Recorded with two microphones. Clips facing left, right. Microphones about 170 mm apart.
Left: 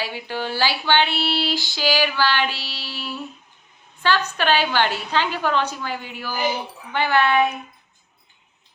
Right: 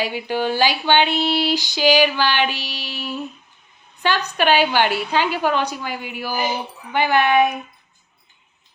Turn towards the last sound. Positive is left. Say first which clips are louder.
# right 2 dB
turn(degrees=-15)  # may be behind; listen again after turning